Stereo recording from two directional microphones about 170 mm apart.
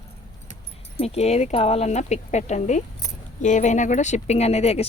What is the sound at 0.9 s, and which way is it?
Speech, 40° left (ahead or behind).